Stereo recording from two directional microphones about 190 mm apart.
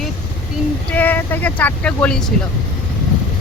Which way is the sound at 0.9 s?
10° left (ahead or behind).